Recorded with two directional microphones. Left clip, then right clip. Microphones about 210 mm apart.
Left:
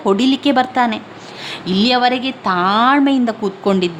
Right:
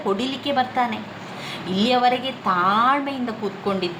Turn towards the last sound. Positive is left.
turn(degrees=50)  # may be behind; listen again after turning